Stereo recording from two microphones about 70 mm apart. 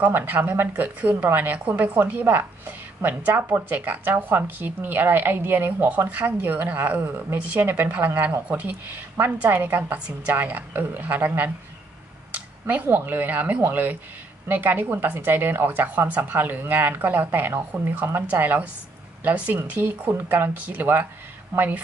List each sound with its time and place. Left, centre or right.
0.0 s speech: right
8.5 s speech: centre
9.5 s speech: right